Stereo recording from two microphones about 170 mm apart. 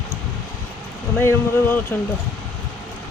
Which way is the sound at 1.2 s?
15° left (ahead or behind).